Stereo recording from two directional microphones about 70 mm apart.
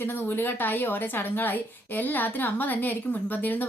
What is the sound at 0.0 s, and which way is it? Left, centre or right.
Speech, left.